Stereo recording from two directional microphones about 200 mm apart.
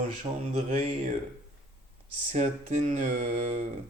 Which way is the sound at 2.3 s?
35° right (ahead or behind).